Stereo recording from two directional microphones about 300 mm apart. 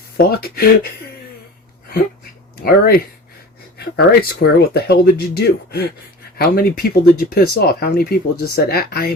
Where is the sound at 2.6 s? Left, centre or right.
Left.